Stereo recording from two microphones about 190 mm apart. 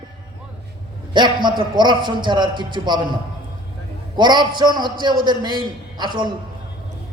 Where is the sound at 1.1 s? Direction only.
25° right (ahead or behind).